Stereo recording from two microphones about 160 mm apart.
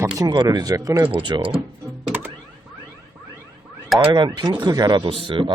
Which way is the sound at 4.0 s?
30° right (ahead or behind).